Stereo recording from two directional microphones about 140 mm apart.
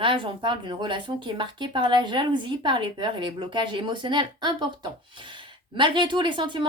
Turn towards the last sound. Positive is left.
turn(degrees=-35)  # may be behind; listen again after turning